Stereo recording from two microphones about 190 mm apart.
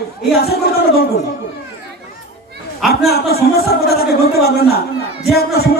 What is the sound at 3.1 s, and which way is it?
A man's voice, 55° left (ahead or behind).